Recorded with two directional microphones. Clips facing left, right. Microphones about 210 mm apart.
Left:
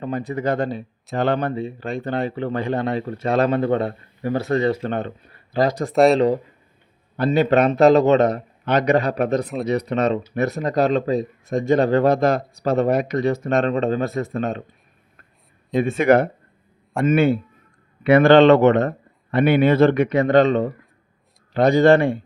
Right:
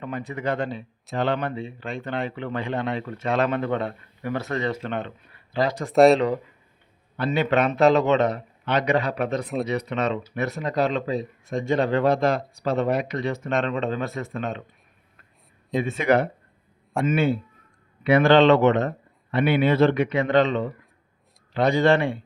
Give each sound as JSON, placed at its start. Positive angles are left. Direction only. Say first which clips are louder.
{"t": 0.0, "sound": "speech", "louder": "left 5 dB", "side_deg": 35}
{"t": 5.9, "sound": "speech", "louder": "right 1 dB", "side_deg": 0}
{"t": 6.1, "sound": "speech", "louder": "left 6 dB", "side_deg": 35}
{"t": 15.8, "sound": "a man's voice", "louder": "left 5 dB", "side_deg": 50}